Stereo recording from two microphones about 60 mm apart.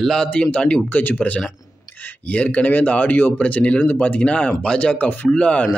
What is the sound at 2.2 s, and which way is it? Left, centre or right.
Speech, left.